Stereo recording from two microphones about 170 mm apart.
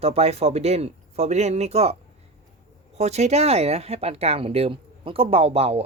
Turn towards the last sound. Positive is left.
turn(degrees=-35)  # may be behind; listen again after turning